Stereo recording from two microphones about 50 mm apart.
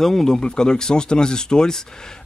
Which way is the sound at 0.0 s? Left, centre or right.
Centre.